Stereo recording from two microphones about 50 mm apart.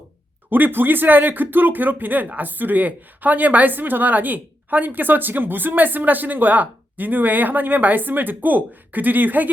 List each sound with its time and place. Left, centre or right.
0.5 s speech: right